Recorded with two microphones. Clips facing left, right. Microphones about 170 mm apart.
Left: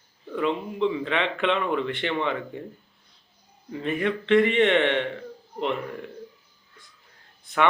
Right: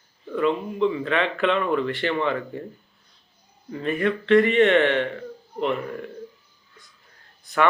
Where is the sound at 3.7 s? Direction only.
15° left (ahead or behind).